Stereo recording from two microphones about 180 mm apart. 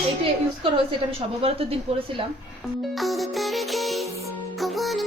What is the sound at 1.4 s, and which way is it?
Speech, 30° right (ahead or behind).